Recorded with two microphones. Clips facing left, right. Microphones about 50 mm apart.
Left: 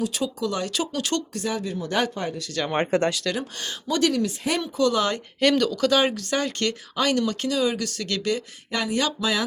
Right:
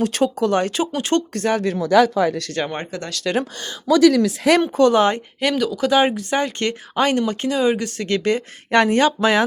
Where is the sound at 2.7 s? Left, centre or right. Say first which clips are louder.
Left 6 dB; left.